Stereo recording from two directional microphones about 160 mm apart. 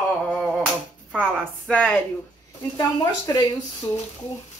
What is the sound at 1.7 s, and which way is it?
Speech, 10° left (ahead or behind).